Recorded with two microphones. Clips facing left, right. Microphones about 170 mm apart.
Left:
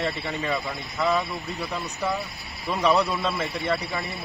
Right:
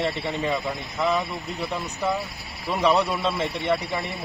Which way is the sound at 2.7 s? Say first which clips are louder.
Right 1 dB; 20° right (ahead or behind).